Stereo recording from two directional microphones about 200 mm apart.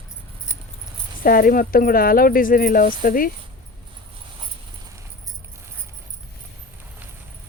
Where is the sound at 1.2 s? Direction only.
45° left (ahead or behind).